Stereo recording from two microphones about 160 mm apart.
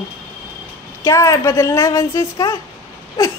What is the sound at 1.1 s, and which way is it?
A child's voice, 20° left (ahead or behind).